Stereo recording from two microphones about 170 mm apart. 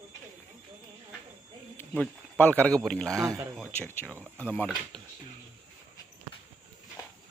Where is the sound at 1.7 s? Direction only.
10° left (ahead or behind).